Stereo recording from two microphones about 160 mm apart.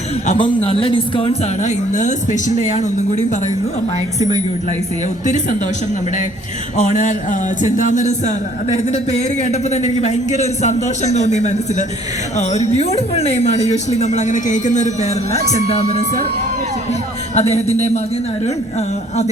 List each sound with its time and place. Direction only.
0.3 s a man's voice: 35° left (ahead or behind)
5.2 s a man's voice: 50° left (ahead or behind)
6.7 s a man's voice: 50° left (ahead or behind)
17.3 s a man's voice: 40° left (ahead or behind)